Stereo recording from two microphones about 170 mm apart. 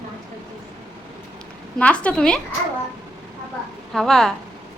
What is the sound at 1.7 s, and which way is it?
Speech, 5° left (ahead or behind).